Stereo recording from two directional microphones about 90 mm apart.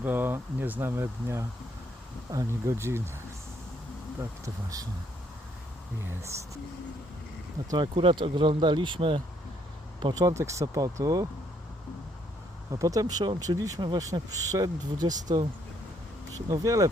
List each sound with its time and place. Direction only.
0.0 s speech: 20° right (ahead or behind)
4.2 s speech: 40° right (ahead or behind)
7.8 s speech: 70° right (ahead or behind)
10.0 s speech: 60° right (ahead or behind)
10.2 s speech: 35° right (ahead or behind)
12.8 s speech: 40° right (ahead or behind)
13.6 s speech: 40° right (ahead or behind)
16.5 s speech: 40° right (ahead or behind)